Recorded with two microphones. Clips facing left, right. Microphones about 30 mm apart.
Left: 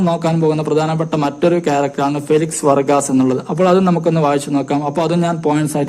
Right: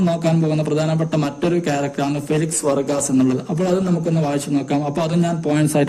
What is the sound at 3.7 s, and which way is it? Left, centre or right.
Speech, left.